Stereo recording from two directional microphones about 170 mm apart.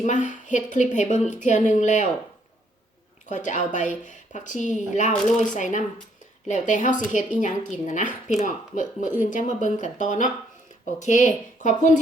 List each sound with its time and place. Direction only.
0.0 s a woman's voice: 45° left (ahead or behind)
3.2 s a woman's voice: 45° left (ahead or behind)